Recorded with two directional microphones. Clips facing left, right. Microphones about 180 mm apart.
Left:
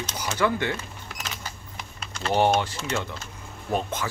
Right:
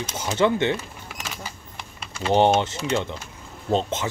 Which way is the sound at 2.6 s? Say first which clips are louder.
Right 4 dB; 20° right (ahead or behind).